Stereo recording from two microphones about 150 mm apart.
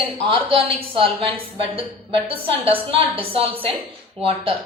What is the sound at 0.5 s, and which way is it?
A woman's voice, 35° right (ahead or behind).